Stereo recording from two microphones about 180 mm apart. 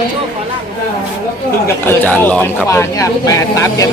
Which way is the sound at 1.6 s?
10° left (ahead or behind).